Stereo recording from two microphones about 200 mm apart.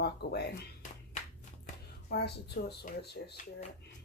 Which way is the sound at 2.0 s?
55° left (ahead or behind).